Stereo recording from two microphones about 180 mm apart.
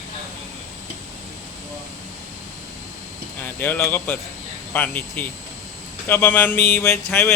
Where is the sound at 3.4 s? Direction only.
10° left (ahead or behind).